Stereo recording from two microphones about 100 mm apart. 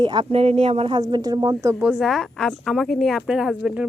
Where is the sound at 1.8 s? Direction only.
10° right (ahead or behind).